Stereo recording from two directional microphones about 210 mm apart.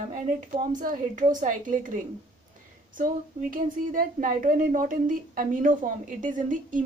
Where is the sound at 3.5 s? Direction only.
40° right (ahead or behind).